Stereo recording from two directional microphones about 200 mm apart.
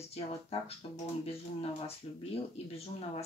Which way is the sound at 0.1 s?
30° left (ahead or behind).